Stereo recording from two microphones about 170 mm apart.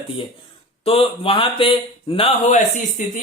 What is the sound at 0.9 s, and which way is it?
A man's voice, 35° left (ahead or behind).